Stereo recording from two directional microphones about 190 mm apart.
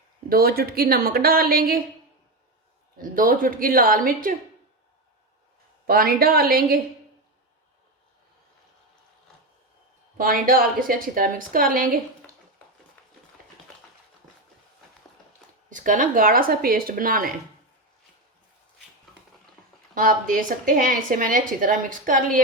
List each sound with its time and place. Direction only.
0.3 s a woman's voice: 50° right (ahead or behind)
3.0 s a woman's voice: 45° right (ahead or behind)
5.8 s a woman's voice: 50° right (ahead or behind)
10.2 s a woman's voice: 50° right (ahead or behind)
15.7 s a woman's voice: 45° right (ahead or behind)
19.9 s a woman's voice: 50° right (ahead or behind)